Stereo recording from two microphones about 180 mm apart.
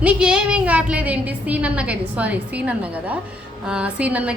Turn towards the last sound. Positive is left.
turn(degrees=-10)  # may be behind; listen again after turning